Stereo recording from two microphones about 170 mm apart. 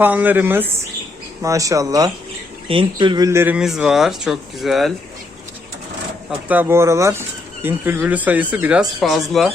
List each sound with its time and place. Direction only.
0.0 s speech: 10° right (ahead or behind)
6.5 s speech: 10° right (ahead or behind)